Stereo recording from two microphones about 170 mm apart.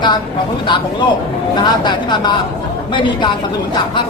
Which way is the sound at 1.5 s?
25° left (ahead or behind).